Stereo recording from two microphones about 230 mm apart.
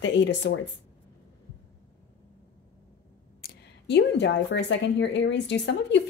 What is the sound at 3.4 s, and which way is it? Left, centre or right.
A woman's voice, left.